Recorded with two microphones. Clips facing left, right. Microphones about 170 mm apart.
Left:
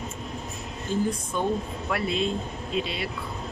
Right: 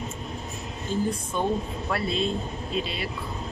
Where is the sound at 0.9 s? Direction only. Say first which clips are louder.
Even; 15° left (ahead or behind).